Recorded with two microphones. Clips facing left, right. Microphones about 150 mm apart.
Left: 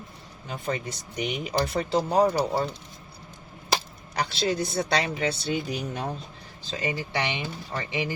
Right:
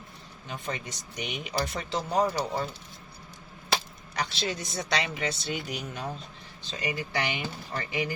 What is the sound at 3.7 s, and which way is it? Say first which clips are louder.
Speech: left 2 dB; 35° left (ahead or behind).